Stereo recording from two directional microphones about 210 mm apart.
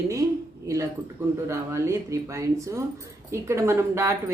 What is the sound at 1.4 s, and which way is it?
Speech, 15° right (ahead or behind).